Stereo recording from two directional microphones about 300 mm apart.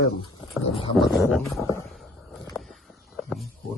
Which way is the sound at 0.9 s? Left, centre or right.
Centre.